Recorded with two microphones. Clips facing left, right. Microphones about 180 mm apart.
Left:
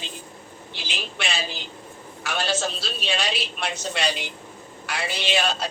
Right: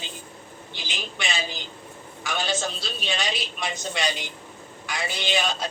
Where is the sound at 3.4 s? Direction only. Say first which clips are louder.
Left 1 dB; 65° left (ahead or behind).